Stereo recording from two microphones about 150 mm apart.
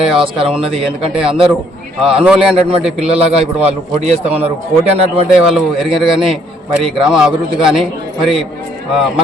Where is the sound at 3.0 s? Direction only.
40° right (ahead or behind).